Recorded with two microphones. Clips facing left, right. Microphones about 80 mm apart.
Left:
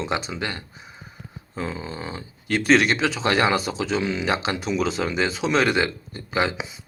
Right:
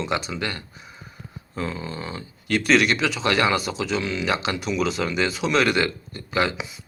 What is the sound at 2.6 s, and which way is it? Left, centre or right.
Speech, left.